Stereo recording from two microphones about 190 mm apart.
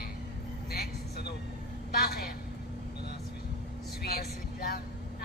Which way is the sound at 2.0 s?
55° left (ahead or behind).